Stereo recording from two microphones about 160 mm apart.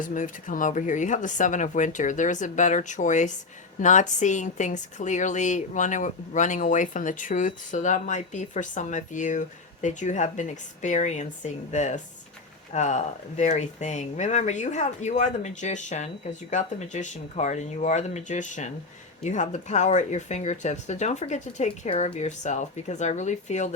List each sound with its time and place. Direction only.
0.0 s a woman's voice: 55° left (ahead or behind)